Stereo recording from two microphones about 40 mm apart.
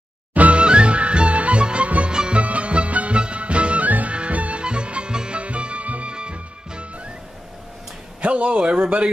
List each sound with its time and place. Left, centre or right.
0.3 s music: right
0.6 s music: right
8.2 s speech: right